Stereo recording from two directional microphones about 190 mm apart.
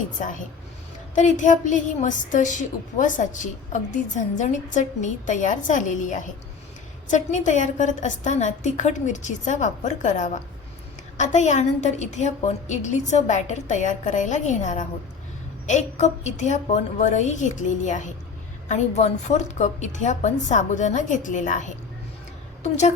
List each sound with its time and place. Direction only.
0.2 s a woman's voice: 45° left (ahead or behind)